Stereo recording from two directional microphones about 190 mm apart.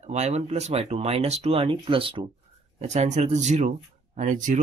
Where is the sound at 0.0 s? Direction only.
35° right (ahead or behind).